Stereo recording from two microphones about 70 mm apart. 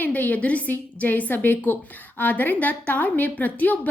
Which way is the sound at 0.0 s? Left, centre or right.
Left.